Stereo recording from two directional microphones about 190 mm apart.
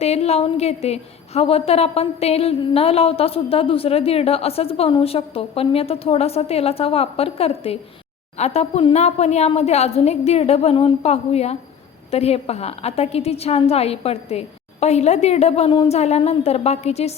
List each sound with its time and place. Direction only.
0.0 s a woman's voice: 35° left (ahead or behind)